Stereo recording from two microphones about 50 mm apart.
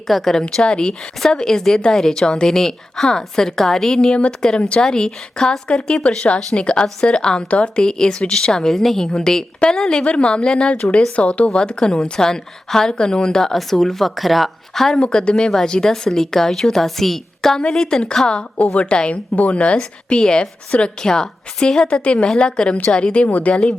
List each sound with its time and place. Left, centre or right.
0.1 s a woman's voice: centre
6.6 s a woman's voice: left
11.4 s a woman's voice: centre
13.4 s speech: centre
14.9 s a woman's voice: centre
18.6 s a woman's voice: left